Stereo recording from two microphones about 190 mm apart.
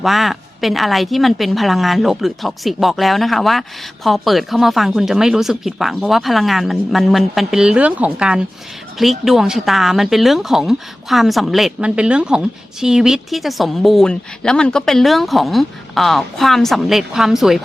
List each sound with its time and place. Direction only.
0.0 s speech: centre (ahead or behind)